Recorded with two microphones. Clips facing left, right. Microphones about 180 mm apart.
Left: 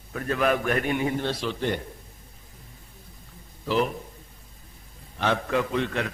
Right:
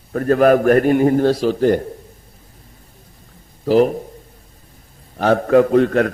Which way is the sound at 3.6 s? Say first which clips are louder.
Right 11 dB; 45° right (ahead or behind).